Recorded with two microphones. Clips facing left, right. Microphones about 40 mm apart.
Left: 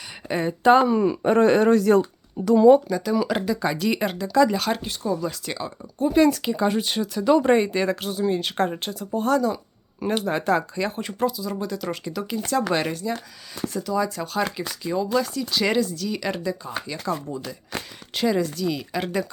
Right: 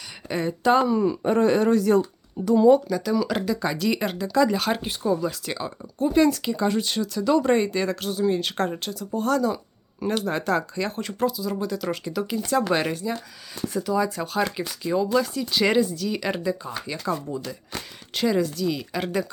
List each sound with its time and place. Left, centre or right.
0.3 s speech: centre
0.6 s speech: left
0.9 s speech: left
2.4 s speech: left
2.7 s speech: centre
4.8 s speech: centre
5.2 s speech: centre
8.1 s speech: centre
8.8 s speech: left
10.0 s speech: centre
18.1 s speech: centre